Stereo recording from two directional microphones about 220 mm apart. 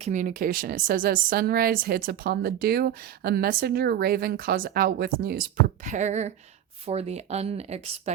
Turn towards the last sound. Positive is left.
turn(degrees=-30)  # may be behind; listen again after turning